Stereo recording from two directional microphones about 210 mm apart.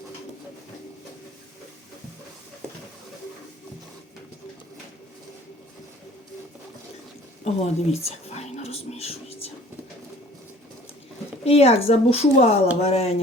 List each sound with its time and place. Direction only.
7.4 s whispering: 30° left (ahead or behind)
11.4 s speech: 30° left (ahead or behind)